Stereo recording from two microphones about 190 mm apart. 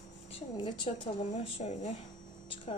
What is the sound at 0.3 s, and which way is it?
A woman's voice, 25° left (ahead or behind).